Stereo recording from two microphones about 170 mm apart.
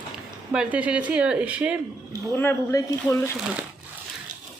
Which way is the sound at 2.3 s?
15° left (ahead or behind).